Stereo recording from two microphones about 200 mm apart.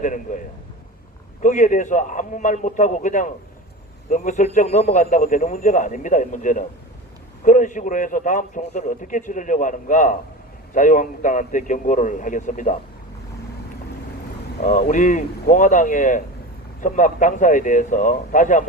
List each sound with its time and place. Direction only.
0.0 s a man's voice: 40° left (ahead or behind)
14.6 s a man's voice: 40° left (ahead or behind)